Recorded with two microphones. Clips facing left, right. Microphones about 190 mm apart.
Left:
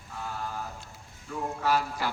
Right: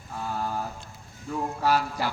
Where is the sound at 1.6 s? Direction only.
40° right (ahead or behind).